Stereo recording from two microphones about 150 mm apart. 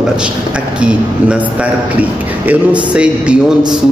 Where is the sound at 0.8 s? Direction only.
5° right (ahead or behind).